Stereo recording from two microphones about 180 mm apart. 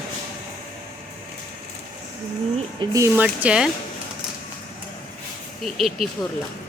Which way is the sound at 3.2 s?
5° right (ahead or behind).